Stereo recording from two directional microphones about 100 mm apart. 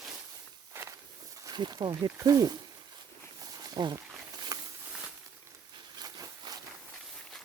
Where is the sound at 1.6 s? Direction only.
45° right (ahead or behind).